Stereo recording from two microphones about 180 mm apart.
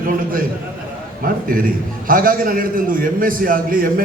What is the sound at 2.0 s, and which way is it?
A man's voice, 50° right (ahead or behind).